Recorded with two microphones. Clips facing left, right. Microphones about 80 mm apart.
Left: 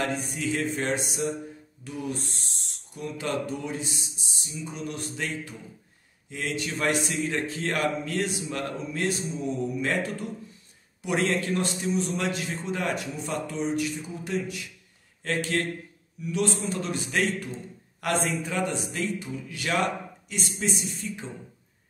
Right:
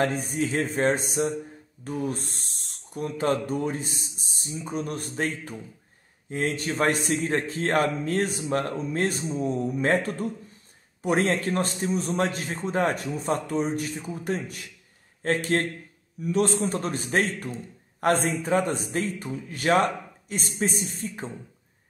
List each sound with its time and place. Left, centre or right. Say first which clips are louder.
0.0 s a man's voice: right 4 dB; right